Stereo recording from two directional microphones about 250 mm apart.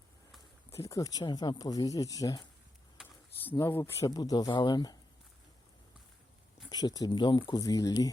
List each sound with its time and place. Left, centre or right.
0.7 s speech: centre
3.5 s speech: centre
6.7 s speech: centre